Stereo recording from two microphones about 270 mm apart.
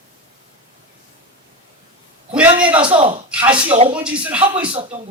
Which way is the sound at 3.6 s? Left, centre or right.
Centre.